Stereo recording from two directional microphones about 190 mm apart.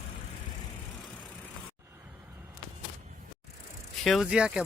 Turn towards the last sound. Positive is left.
turn(degrees=-5)  # may be behind; listen again after turning